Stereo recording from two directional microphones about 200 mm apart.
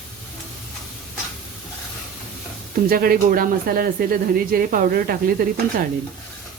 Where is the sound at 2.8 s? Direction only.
45° right (ahead or behind).